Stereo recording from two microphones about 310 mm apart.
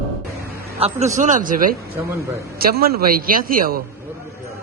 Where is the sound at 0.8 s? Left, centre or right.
Right.